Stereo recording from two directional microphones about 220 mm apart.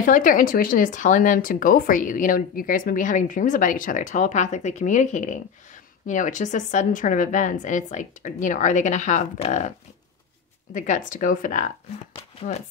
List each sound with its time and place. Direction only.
0.0 s speech: 35° left (ahead or behind)
10.7 s speech: 35° left (ahead or behind)